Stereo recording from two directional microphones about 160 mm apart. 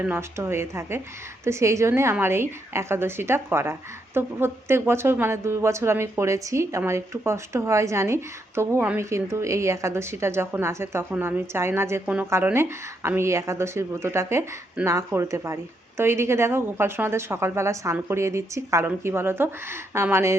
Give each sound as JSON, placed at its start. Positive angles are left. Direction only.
{"t": 0.0, "sound": "a woman's voice", "side_deg": -15}